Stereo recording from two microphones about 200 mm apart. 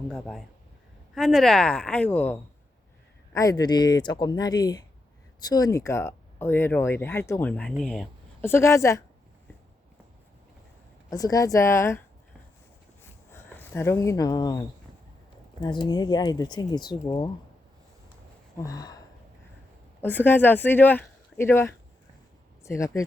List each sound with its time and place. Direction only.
0.1 s speech: centre (ahead or behind)
11.1 s speech: 15° left (ahead or behind)
13.0 s a sound: 10° left (ahead or behind)
15.6 s speech: 20° left (ahead or behind)
18.6 s speech: 20° left (ahead or behind)
20.0 s speech: 10° left (ahead or behind)